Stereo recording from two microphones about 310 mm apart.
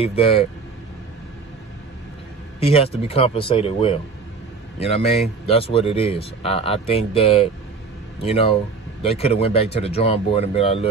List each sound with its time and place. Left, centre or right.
0.0 s speech: centre
2.6 s speech: centre